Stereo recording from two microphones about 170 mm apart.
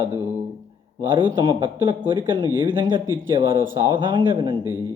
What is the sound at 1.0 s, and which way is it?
Speech, 25° right (ahead or behind).